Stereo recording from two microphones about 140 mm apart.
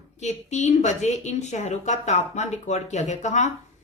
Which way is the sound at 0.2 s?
55° left (ahead or behind).